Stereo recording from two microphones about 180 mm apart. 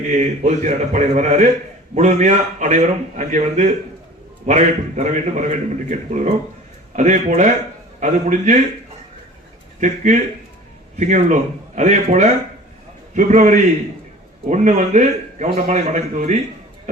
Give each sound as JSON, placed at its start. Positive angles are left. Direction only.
{"t": 0.1, "sound": "a man's voice", "side_deg": -40}
{"t": 9.8, "sound": "a man's voice", "side_deg": -45}